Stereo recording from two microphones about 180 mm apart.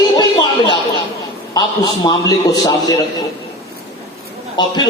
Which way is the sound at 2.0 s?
20° left (ahead or behind).